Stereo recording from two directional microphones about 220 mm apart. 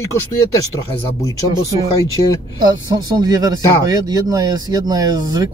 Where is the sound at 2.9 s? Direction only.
15° right (ahead or behind).